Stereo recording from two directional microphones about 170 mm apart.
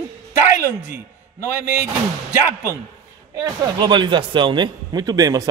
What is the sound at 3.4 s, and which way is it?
Speech, 25° right (ahead or behind).